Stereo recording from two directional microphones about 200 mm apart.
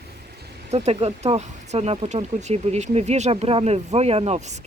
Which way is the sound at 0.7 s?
30° right (ahead or behind).